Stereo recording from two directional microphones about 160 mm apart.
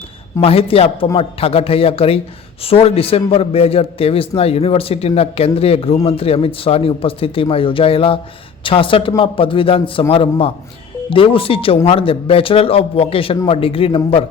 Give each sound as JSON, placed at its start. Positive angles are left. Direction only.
{"t": 0.4, "sound": "a man's voice", "side_deg": 35}